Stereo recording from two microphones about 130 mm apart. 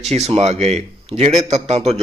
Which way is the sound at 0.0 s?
55° right (ahead or behind).